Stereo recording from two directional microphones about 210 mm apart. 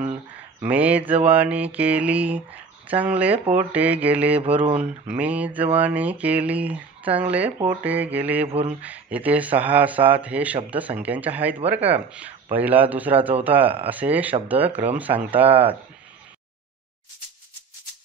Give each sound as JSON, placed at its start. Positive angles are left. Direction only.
{"t": 0.6, "sound": "mantra", "side_deg": -5}
{"t": 4.4, "sound": "speech", "side_deg": -25}
{"t": 4.7, "sound": "mantra", "side_deg": -5}
{"t": 8.5, "sound": "speech", "side_deg": -25}
{"t": 8.8, "sound": "mantra", "side_deg": -5}
{"t": 11.5, "sound": "speech", "side_deg": -30}
{"t": 12.5, "sound": "mantra", "side_deg": -10}